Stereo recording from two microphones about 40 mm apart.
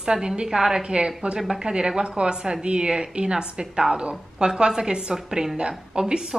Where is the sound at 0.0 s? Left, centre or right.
Centre.